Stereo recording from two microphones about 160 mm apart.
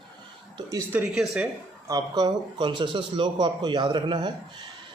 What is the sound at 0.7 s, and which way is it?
Speech, 20° right (ahead or behind).